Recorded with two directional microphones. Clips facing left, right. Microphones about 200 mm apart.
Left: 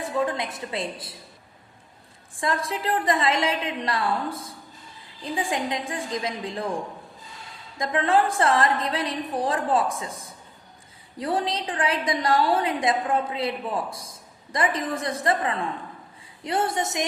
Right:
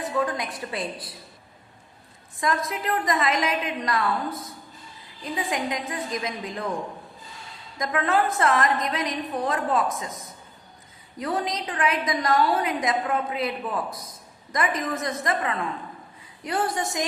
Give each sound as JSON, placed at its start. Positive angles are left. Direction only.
{"t": 0.0, "sound": "a woman's voice", "side_deg": 25}
{"t": 2.4, "sound": "a woman's voice", "side_deg": 30}
{"t": 7.8, "sound": "a woman's voice", "side_deg": 30}